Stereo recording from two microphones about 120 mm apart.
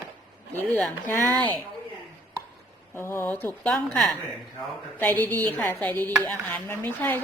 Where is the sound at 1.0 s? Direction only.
20° left (ahead or behind).